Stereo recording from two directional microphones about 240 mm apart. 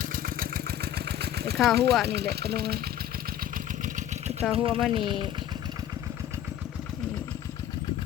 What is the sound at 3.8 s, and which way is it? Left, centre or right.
Engine, right.